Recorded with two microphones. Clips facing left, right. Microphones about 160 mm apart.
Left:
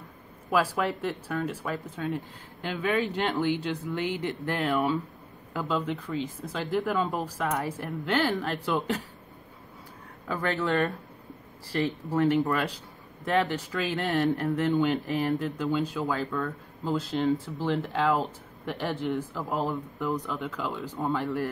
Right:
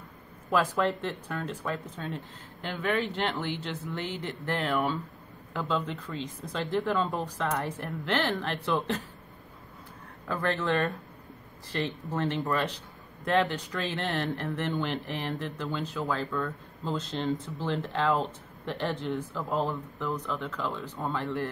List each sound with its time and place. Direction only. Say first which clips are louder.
0.5 s speech: even; 5° left (ahead or behind)
7.1 s speech: left 1 dB; 20° left (ahead or behind)
7.3 s speech: left 1 dB; 10° left (ahead or behind)
10.2 s speech: left 1 dB; centre (ahead or behind)
20.0 s speech: left 2 dB; 20° left (ahead or behind)
20.3 s speech: left 1 dB; 5° left (ahead or behind)